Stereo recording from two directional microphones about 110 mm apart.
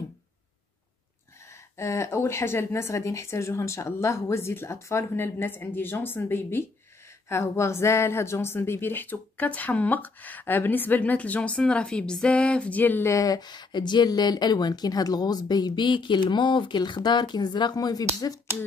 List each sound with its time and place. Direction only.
1.8 s speech: 25° left (ahead or behind)
13.1 s speech: 35° left (ahead or behind)